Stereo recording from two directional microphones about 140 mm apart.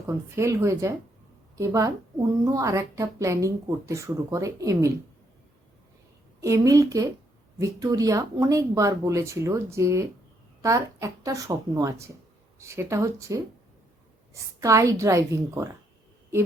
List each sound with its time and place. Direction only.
0.3 s a woman's voice: 20° right (ahead or behind)
6.4 s a woman's voice: 25° right (ahead or behind)
14.6 s a woman's voice: 25° right (ahead or behind)